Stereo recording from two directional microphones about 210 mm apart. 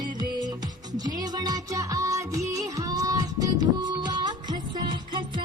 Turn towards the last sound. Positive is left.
turn(degrees=-20)  # may be behind; listen again after turning